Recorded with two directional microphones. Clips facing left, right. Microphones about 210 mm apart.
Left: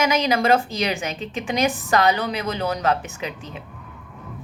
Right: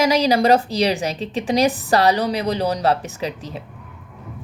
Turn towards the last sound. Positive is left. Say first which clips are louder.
# right 4 dB
turn(degrees=-35)  # may be behind; listen again after turning